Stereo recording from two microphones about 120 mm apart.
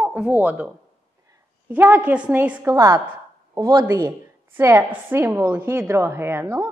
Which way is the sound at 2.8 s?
25° right (ahead or behind).